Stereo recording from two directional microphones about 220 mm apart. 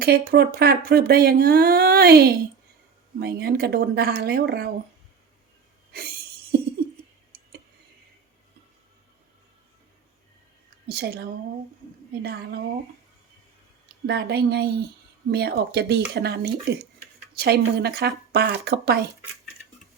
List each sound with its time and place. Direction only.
0.0 s speech: 45° right (ahead or behind)
5.9 s a sound: 45° right (ahead or behind)
10.8 s speech: 45° right (ahead or behind)
13.8 s a woman's voice: 50° right (ahead or behind)